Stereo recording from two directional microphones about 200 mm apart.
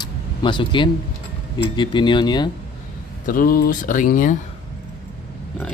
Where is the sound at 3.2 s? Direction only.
45° left (ahead or behind).